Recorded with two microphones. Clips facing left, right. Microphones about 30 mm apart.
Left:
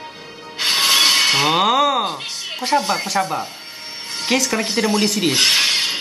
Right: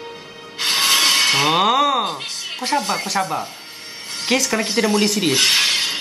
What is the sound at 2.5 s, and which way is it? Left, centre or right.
Music, centre.